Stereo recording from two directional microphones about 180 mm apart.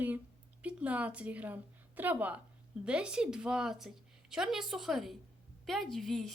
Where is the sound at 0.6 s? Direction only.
10° right (ahead or behind).